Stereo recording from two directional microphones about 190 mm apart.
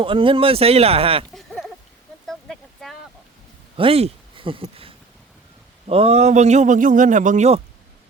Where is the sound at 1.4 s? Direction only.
Centre (ahead or behind).